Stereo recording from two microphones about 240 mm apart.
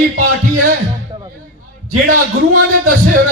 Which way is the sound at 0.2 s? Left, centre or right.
Right.